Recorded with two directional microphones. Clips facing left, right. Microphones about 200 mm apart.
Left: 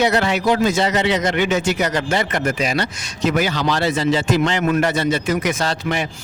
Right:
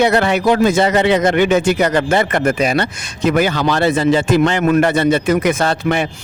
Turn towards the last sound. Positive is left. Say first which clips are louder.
# right 5 dB
turn(degrees=-55)  # may be behind; listen again after turning